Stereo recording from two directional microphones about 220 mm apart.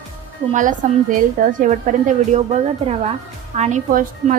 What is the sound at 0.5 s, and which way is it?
Speech, 35° right (ahead or behind).